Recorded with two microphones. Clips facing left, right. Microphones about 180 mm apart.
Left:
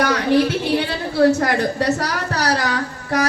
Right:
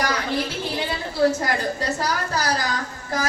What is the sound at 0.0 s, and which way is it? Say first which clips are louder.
A woman's voice: left 8 dB; 70° left (ahead or behind).